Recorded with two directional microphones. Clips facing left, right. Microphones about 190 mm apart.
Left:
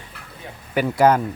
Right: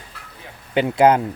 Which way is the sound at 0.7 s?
20° right (ahead or behind).